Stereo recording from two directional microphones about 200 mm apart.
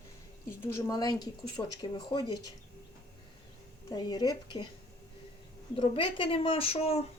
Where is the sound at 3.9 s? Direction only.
20° left (ahead or behind).